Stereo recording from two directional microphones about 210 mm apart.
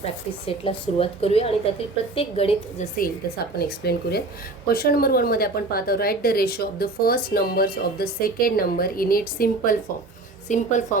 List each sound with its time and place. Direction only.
0.0 s a woman's voice: 25° left (ahead or behind)
3.0 s a woman's voice: 45° left (ahead or behind)